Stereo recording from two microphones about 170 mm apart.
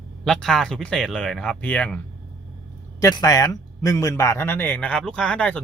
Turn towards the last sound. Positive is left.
turn(degrees=5)  # may be behind; listen again after turning